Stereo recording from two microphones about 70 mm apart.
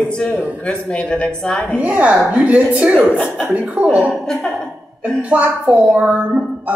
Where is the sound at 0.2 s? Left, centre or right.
Centre.